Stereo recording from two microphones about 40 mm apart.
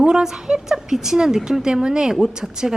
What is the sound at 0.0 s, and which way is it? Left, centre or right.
A woman's voice, centre.